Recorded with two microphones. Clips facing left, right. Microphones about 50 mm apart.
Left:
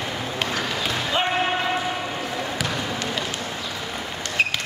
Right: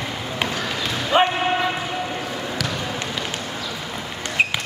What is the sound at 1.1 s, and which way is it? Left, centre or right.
Basketball bounce, right.